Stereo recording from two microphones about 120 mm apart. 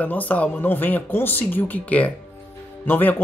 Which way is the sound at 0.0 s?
15° left (ahead or behind).